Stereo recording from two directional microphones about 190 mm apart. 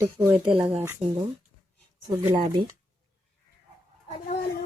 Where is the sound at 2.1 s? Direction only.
25° right (ahead or behind).